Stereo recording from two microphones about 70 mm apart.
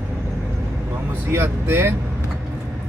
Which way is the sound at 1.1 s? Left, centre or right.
Right.